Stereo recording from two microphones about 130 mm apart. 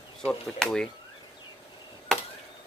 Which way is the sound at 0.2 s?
5° left (ahead or behind).